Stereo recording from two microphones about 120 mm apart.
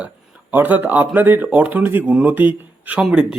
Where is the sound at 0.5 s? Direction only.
15° right (ahead or behind).